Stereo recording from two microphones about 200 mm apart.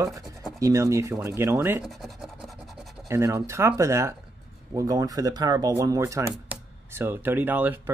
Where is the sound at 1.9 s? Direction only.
Centre (ahead or behind).